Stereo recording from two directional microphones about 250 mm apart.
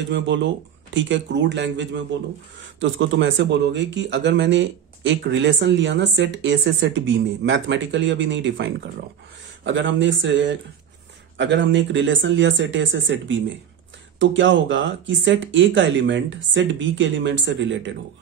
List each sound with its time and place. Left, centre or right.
0.1 s speech: right
9.7 s speech: right